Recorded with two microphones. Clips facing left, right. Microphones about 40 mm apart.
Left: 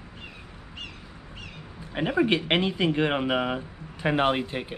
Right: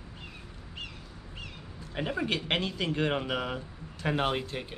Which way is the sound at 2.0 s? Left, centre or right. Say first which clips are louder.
Left 7 dB; left.